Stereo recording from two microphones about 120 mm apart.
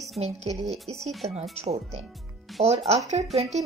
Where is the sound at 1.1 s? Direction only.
Centre (ahead or behind).